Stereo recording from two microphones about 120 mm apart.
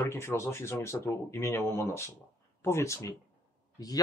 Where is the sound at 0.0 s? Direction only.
20° left (ahead or behind).